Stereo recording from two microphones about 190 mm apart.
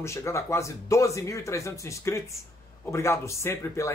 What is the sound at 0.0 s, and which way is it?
Speech, 15° left (ahead or behind).